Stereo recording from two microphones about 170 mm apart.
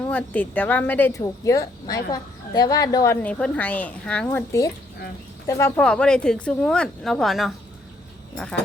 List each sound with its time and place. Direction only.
0.1 s speech: 10° left (ahead or behind)
3.2 s speech: 10° left (ahead or behind)
5.8 s speech: 5° left (ahead or behind)